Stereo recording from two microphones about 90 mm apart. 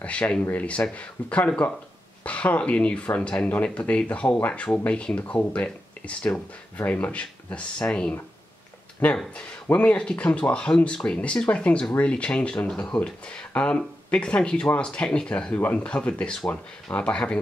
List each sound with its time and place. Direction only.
0.0 s speech: 10° left (ahead or behind)